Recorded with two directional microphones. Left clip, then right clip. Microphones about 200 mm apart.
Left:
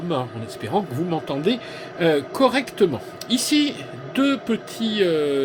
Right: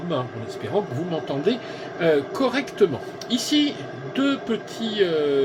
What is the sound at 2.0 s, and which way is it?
Speech, 55° left (ahead or behind).